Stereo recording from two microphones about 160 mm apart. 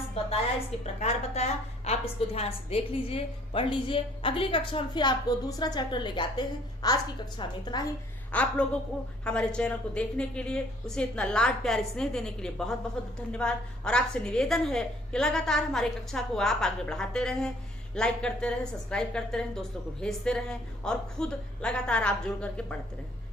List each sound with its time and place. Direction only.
0.9 s a woman's voice: 40° left (ahead or behind); by 7.9 s 25° left (ahead or behind)
8.3 s a woman's voice: 5° left (ahead or behind)